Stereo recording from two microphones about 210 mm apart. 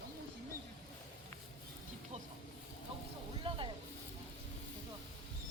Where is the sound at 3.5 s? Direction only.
25° right (ahead or behind).